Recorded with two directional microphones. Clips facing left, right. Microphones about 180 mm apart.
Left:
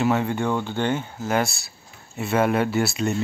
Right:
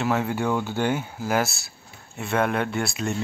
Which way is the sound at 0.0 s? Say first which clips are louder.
Left 2 dB; centre (ahead or behind).